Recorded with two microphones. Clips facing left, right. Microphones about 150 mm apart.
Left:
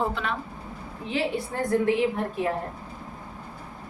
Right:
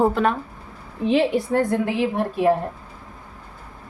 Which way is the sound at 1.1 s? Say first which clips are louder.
Right 9 dB; 90° right.